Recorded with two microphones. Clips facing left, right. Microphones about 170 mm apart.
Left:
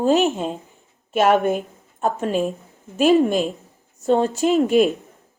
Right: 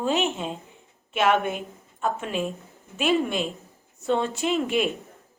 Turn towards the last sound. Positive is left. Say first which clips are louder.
# left 8 dB
turn(degrees=40)  # may be behind; listen again after turning